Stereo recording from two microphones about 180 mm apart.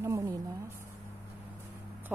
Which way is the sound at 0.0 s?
15° right (ahead or behind).